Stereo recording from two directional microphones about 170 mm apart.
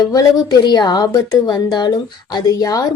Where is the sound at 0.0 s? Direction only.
20° left (ahead or behind).